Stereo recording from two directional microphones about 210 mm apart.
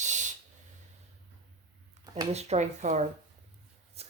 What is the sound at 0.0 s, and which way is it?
Hiss, 35° right (ahead or behind).